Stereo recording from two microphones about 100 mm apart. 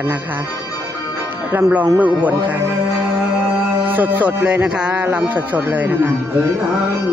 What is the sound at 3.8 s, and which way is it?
Music, 20° right (ahead or behind).